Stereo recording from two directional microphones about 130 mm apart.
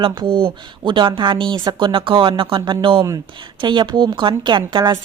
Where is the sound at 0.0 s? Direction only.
40° right (ahead or behind).